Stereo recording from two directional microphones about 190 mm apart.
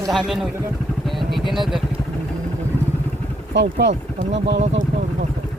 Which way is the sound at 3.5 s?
70° right (ahead or behind).